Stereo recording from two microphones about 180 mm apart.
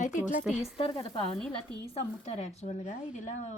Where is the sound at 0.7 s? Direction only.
30° left (ahead or behind).